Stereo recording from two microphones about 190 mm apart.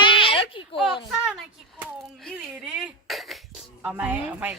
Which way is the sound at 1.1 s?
5° right (ahead or behind).